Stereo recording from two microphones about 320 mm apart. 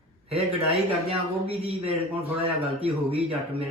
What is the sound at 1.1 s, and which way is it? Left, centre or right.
A man's voice, centre.